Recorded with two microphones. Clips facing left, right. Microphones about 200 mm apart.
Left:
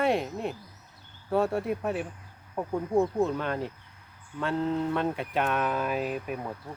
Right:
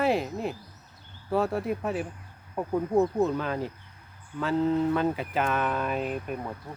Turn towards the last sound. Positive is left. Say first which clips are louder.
# even
turn(degrees=5)  # may be behind; listen again after turning